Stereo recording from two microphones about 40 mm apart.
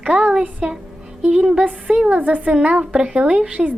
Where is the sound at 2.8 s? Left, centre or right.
Right.